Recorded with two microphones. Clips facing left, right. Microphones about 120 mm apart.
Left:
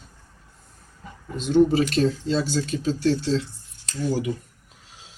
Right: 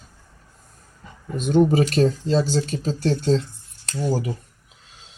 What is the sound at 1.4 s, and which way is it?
Speech, 50° right (ahead or behind).